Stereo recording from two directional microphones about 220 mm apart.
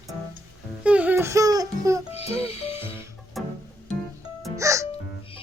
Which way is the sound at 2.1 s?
25° left (ahead or behind).